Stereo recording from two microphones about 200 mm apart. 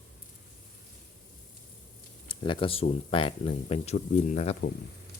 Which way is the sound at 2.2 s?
25° left (ahead or behind).